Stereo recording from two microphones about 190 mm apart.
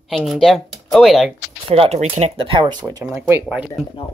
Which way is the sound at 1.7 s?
30° right (ahead or behind).